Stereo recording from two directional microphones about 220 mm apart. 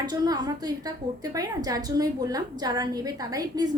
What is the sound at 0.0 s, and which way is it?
A woman's voice, 20° right (ahead or behind).